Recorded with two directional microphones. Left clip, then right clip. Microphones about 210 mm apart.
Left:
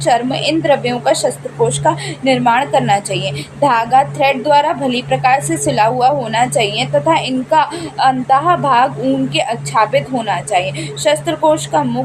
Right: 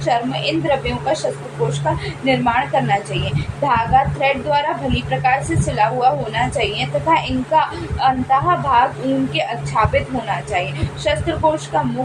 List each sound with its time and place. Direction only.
0.0 s a woman's voice: 50° left (ahead or behind)